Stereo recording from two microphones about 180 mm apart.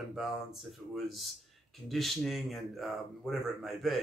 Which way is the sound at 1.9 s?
Centre (ahead or behind).